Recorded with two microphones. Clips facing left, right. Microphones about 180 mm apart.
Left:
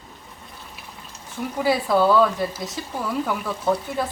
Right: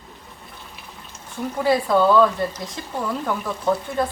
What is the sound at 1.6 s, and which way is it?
Speech, 5° left (ahead or behind).